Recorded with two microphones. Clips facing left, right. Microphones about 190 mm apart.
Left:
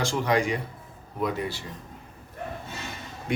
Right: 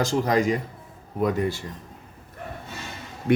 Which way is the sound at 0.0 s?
40° right (ahead or behind).